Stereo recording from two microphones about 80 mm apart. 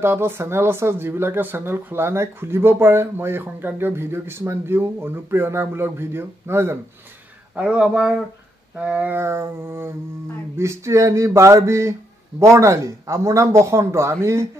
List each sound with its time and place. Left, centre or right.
0.0 s speech: right
7.5 s speech: centre
9.1 s speech: right